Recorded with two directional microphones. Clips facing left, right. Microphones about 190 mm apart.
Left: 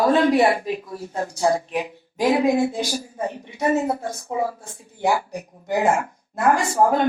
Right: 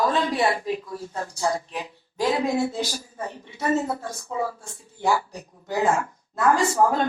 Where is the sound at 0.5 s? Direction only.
15° left (ahead or behind).